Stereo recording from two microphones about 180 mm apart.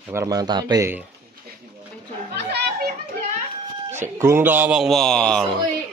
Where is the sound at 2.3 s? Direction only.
70° right (ahead or behind).